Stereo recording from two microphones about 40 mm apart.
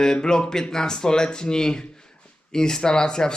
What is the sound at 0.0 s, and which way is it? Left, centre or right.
Speech, centre.